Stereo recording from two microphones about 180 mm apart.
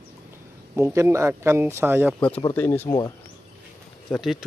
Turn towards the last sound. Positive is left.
turn(degrees=0)  # may be behind; listen again after turning